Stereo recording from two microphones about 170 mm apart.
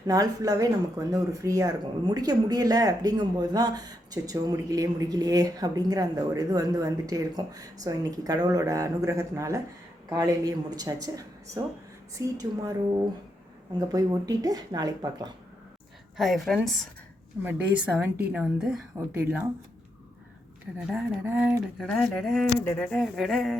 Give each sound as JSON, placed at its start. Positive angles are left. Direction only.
{"t": 0.1, "sound": "speech", "side_deg": -20}
{"t": 12.1, "sound": "speech", "side_deg": -20}
{"t": 13.7, "sound": "speech", "side_deg": -20}
{"t": 16.1, "sound": "speech", "side_deg": 0}
{"t": 17.4, "sound": "speech", "side_deg": -15}
{"t": 20.7, "sound": "speech", "side_deg": -10}
{"t": 21.8, "sound": "speech", "side_deg": 5}